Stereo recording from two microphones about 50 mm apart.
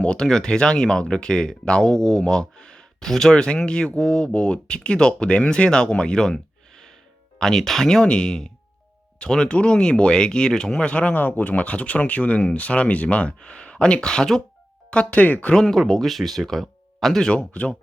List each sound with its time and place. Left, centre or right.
0.0 s speech: centre
11.1 s speech: left
15.2 s speech: left
15.5 s speech: centre
17.5 s speech: left